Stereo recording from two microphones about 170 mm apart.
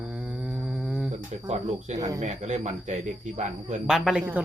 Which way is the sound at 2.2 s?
45° right (ahead or behind).